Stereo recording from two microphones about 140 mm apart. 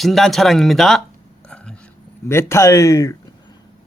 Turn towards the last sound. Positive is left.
turn(degrees=20)  # may be behind; listen again after turning